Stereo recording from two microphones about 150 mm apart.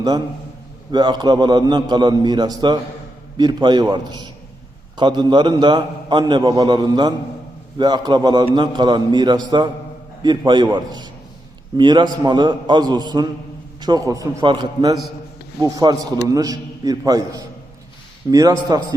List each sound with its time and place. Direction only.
0.9 s a man's voice: 30° right (ahead or behind)